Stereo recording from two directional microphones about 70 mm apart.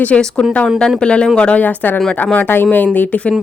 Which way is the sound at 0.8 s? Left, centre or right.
Centre.